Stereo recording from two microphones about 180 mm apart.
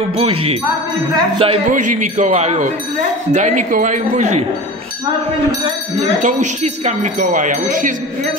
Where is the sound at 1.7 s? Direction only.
45° right (ahead or behind).